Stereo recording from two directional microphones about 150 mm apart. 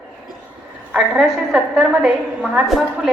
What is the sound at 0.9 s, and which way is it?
A woman's voice, 5° right (ahead or behind).